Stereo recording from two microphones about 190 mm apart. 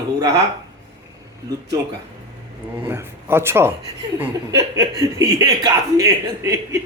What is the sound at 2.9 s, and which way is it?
A man's voice, 10° right (ahead or behind).